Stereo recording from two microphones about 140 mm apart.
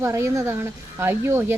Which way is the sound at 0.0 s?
20° right (ahead or behind).